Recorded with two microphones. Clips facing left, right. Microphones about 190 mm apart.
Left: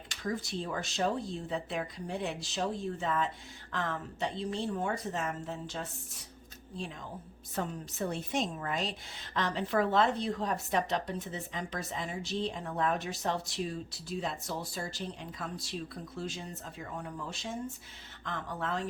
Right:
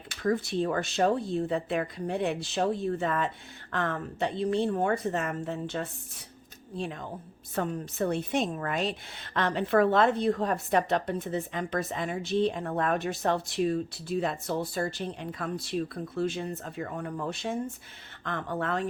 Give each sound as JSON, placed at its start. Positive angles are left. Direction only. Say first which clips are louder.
{"t": 0.2, "sound": "a woman's voice", "louder": "right 8 dB", "side_deg": -60}